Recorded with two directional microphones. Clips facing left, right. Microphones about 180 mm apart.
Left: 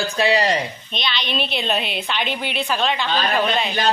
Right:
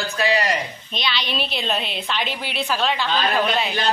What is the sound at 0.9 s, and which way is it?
A woman's voice, 5° right (ahead or behind).